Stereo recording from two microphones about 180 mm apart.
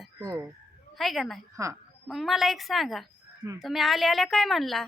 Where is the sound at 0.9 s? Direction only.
Centre (ahead or behind).